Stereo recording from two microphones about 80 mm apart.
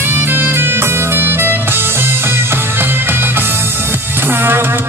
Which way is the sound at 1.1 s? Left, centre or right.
Right.